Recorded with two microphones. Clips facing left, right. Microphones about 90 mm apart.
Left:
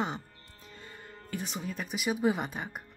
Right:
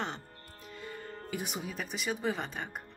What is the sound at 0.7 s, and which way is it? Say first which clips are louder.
Music: right 6 dB; 30° left (ahead or behind).